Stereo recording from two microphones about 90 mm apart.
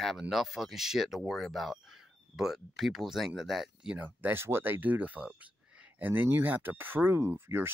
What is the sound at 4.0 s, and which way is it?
Speech, 20° right (ahead or behind).